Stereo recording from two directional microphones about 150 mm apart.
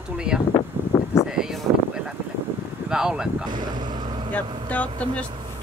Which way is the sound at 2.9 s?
5° right (ahead or behind).